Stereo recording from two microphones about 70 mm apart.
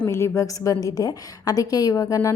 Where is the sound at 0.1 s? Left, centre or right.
Left.